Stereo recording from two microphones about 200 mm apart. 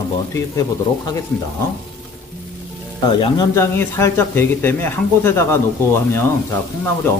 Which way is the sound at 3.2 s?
20° left (ahead or behind).